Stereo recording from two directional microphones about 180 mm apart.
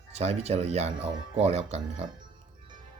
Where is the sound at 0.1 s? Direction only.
35° right (ahead or behind).